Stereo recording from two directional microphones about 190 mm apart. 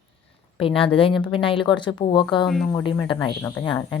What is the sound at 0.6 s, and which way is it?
A woman's voice, 30° left (ahead or behind).